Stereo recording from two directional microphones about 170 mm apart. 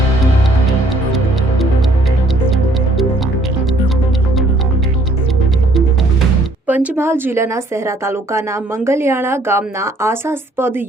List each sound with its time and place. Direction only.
6.7 s a woman's voice: 10° right (ahead or behind)